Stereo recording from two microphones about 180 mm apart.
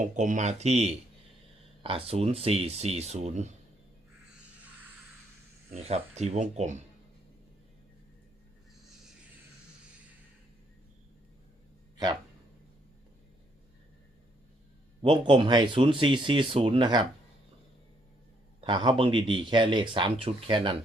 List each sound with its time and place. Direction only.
0.0 s speech: 45° right (ahead or behind)
5.7 s speech: 35° right (ahead or behind)
15.0 s speech: 25° right (ahead or behind)
18.6 s speech: 25° right (ahead or behind)